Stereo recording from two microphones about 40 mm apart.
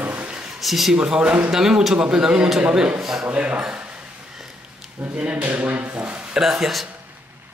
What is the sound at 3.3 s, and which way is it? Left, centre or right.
Speech, right.